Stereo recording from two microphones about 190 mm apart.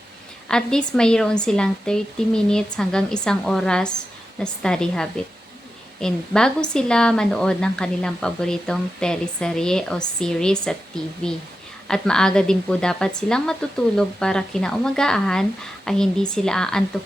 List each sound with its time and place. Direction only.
0.4 s speech: 5° left (ahead or behind)